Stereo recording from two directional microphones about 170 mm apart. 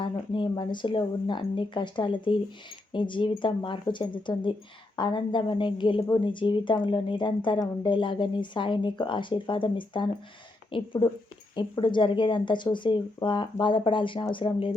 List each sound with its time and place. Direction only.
0.0 s a woman's voice: 30° left (ahead or behind)